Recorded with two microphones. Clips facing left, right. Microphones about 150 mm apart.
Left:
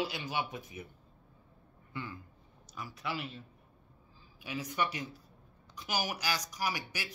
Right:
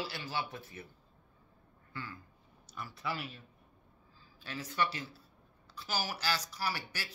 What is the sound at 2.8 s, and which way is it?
Speech, 5° left (ahead or behind).